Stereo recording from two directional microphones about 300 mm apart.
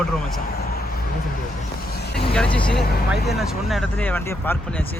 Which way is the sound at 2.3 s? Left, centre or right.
Centre.